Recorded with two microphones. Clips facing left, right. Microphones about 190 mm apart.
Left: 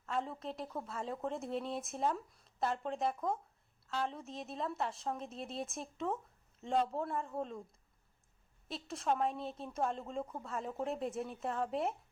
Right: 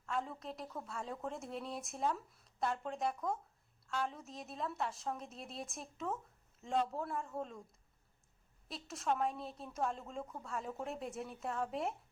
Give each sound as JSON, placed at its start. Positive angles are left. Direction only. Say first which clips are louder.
{"t": 0.0, "sound": "a woman's voice", "louder": "left 2 dB", "side_deg": 0}
{"t": 8.6, "sound": "speech", "louder": "left 2 dB", "side_deg": 0}